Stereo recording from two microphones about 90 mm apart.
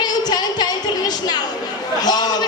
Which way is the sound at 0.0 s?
50° left (ahead or behind).